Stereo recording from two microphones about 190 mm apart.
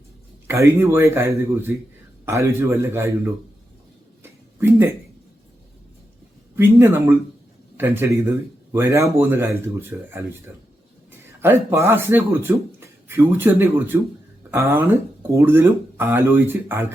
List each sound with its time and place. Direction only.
0.4 s speech: 15° right (ahead or behind)
4.2 s a sound: 15° right (ahead or behind)
6.6 s a man's voice: 15° right (ahead or behind)